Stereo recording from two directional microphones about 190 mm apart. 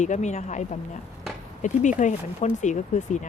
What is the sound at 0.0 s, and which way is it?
Speech, 40° left (ahead or behind).